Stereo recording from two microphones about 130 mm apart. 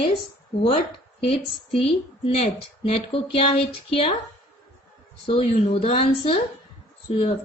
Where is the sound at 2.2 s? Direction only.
50° left (ahead or behind).